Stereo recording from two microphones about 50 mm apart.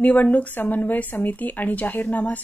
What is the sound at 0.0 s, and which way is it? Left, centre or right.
A woman's voice, left.